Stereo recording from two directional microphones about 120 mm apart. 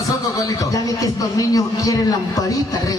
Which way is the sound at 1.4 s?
30° left (ahead or behind).